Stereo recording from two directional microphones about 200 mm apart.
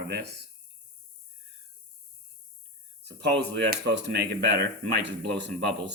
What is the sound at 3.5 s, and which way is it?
Speech, 60° right (ahead or behind).